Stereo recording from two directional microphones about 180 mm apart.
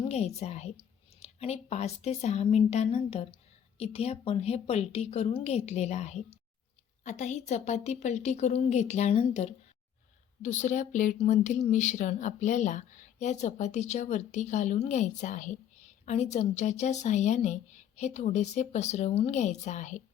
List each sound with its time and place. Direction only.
0.0 s speech: 35° left (ahead or behind)